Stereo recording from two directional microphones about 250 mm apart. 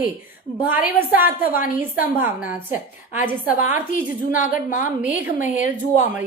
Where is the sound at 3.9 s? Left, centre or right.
Left.